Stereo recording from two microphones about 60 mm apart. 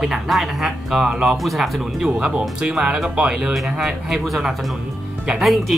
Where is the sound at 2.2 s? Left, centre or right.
Centre.